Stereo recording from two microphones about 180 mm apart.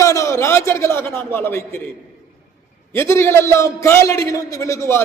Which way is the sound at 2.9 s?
15° left (ahead or behind).